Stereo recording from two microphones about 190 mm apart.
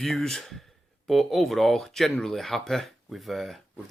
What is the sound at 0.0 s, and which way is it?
Speech, centre (ahead or behind).